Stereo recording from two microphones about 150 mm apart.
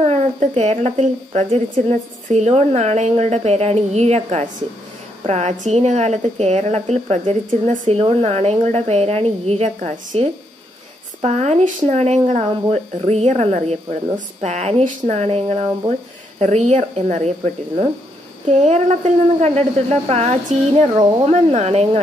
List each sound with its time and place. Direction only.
0.0 s speech: 50° right (ahead or behind)
18.5 s speech: 50° right (ahead or behind)